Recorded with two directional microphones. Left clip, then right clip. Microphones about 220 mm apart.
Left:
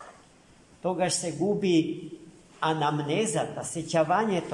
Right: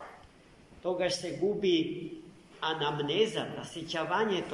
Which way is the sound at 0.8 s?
60° left (ahead or behind).